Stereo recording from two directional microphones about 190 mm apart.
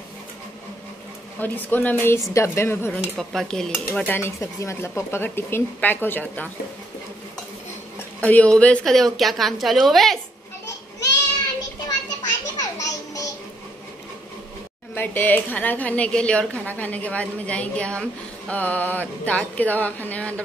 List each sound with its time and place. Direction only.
1.4 s speech: 10° left (ahead or behind)
3.0 s speech: centre (ahead or behind)
8.2 s a woman's voice: 10° left (ahead or behind)
12.5 s a sound: 20° left (ahead or behind)
15.0 s speech: 10° left (ahead or behind)